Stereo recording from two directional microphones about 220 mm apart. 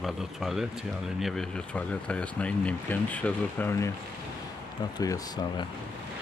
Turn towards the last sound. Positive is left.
turn(degrees=20)  # may be behind; listen again after turning